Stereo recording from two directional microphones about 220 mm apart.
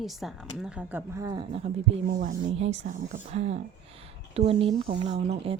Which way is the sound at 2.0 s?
40° right (ahead or behind).